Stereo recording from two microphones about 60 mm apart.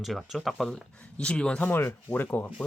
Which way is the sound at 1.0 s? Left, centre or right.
Left.